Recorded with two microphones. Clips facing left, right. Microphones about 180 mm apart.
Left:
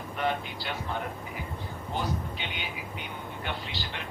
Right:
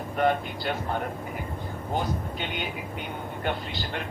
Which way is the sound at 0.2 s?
50° right (ahead or behind).